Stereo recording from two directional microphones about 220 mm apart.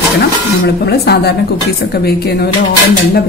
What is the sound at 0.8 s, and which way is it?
A woman's voice, 45° left (ahead or behind).